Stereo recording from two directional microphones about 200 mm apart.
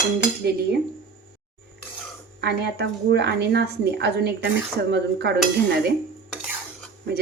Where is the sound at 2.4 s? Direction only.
55° right (ahead or behind).